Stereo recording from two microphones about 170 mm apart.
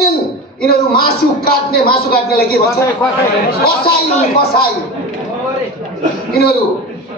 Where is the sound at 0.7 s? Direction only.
65° left (ahead or behind).